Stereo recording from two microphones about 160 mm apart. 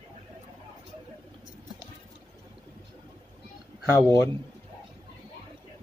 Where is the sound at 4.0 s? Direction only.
20° left (ahead or behind).